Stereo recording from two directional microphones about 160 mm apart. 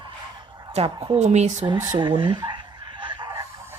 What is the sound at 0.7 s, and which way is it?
Speech, 35° right (ahead or behind).